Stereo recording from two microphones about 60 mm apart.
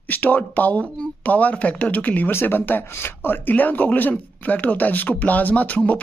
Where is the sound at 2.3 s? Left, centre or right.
Left.